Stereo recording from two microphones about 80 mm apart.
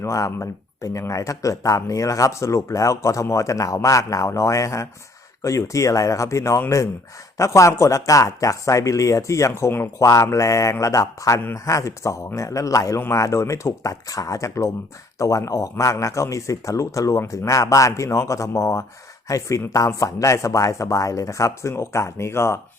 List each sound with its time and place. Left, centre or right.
0.0 s speech: left